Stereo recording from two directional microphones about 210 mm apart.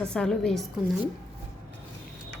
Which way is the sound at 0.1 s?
5° left (ahead or behind).